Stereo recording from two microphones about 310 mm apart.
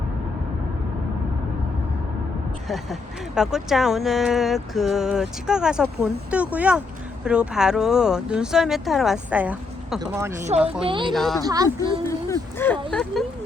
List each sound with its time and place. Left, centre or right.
2.6 s speech: centre
11.1 s speech: centre
11.4 s speech: centre
11.8 s speech: centre